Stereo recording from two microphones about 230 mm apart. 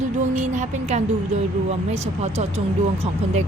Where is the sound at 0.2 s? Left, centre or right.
Right.